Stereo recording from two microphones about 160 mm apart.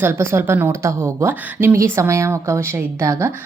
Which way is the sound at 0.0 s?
15° right (ahead or behind).